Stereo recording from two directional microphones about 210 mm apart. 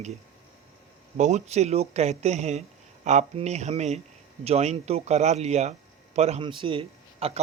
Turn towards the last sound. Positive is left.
turn(degrees=-25)  # may be behind; listen again after turning